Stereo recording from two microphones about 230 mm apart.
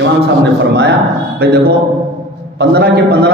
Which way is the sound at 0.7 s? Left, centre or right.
Right.